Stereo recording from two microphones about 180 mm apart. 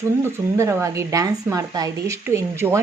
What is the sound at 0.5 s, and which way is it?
Speech, 15° right (ahead or behind).